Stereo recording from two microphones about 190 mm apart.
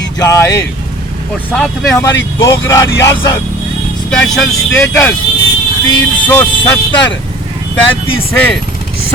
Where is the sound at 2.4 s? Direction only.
15° left (ahead or behind).